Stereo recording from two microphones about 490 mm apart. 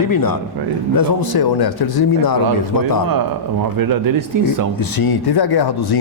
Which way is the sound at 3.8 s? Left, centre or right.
Right.